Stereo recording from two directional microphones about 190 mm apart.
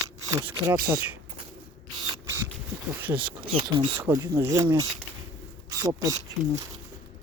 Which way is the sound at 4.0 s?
10° right (ahead or behind).